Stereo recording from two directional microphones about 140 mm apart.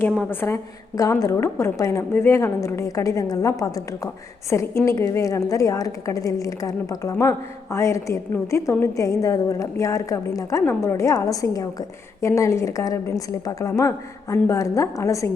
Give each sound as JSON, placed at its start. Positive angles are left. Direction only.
{"t": 0.2, "sound": "a woman's voice", "side_deg": 15}